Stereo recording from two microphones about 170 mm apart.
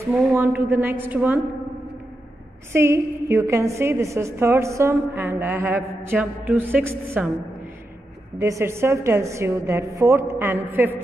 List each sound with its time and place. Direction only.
0.0 s a woman's voice: 10° right (ahead or behind)
2.7 s a woman's voice: 15° right (ahead or behind)
8.4 s a woman's voice: 15° right (ahead or behind)